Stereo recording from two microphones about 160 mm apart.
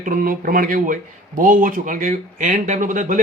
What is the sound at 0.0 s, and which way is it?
Speech, 60° right (ahead or behind).